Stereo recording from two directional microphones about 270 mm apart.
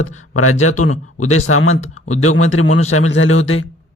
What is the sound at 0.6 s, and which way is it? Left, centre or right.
A man's voice, left.